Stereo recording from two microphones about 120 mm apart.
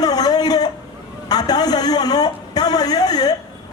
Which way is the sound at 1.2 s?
35° left (ahead or behind).